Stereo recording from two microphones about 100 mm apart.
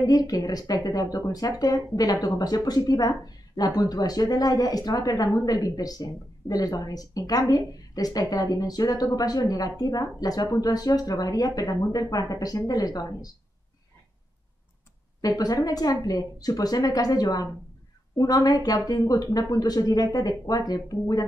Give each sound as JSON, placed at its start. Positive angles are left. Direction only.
{"t": 0.0, "sound": "speech", "side_deg": 35}
{"t": 15.2, "sound": "speech", "side_deg": 40}